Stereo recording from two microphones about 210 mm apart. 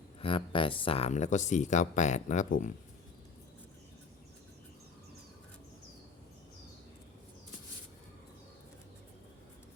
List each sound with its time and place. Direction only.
0.2 s speech: 25° left (ahead or behind)